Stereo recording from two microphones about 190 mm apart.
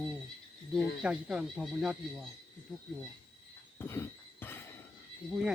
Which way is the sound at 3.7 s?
15° left (ahead or behind).